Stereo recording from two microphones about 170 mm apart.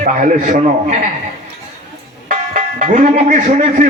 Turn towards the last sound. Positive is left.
turn(degrees=-45)  # may be behind; listen again after turning